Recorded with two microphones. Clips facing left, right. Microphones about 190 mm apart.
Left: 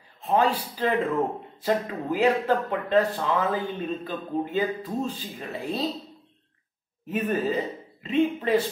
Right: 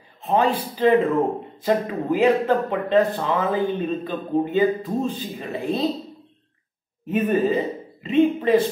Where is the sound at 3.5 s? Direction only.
20° right (ahead or behind).